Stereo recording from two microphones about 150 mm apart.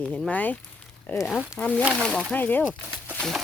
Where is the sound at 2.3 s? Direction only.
10° left (ahead or behind).